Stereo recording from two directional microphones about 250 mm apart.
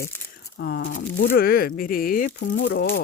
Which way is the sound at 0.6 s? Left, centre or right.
Left.